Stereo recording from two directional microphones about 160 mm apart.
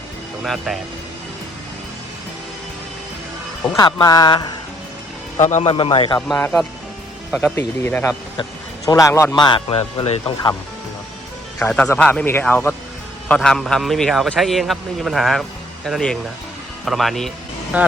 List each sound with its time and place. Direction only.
0.4 s a man's voice: centre (ahead or behind)
3.8 s speech: 25° left (ahead or behind)
5.4 s a man's voice: 45° left (ahead or behind)
5.7 s a man's voice: 35° left (ahead or behind)
6.1 s speech: 5° left (ahead or behind); by 10.5 s 35° left (ahead or behind)
11.6 s a man's voice: 10° left (ahead or behind)